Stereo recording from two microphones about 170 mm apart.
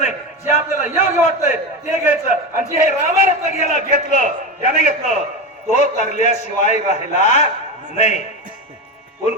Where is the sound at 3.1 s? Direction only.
45° left (ahead or behind).